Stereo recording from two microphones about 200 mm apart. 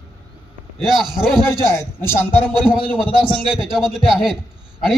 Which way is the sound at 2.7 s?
5° right (ahead or behind).